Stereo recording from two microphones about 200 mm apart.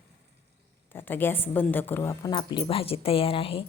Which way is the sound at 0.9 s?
10° left (ahead or behind).